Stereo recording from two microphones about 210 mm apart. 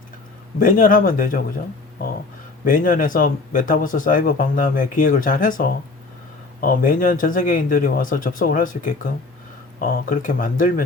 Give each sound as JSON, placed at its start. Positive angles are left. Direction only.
{"t": 0.6, "sound": "speech", "side_deg": 40}
{"t": 2.6, "sound": "speech", "side_deg": 40}